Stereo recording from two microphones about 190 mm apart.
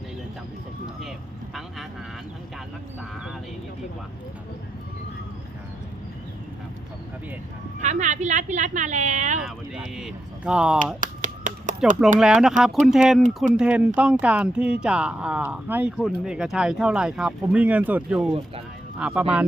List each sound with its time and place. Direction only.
7.8 s speech: 40° right (ahead or behind)
9.4 s speech: centre (ahead or behind)
11.0 s finger snapping: 40° right (ahead or behind)
12.2 s speech: 5° right (ahead or behind)